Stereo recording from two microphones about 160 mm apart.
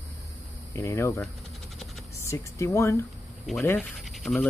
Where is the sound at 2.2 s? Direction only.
20° left (ahead or behind).